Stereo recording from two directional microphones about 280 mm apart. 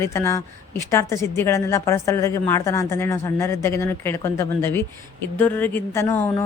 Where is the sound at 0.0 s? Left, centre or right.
Centre.